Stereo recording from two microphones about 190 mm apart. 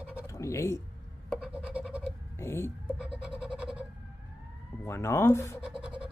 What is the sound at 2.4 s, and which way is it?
Speech, 15° left (ahead or behind).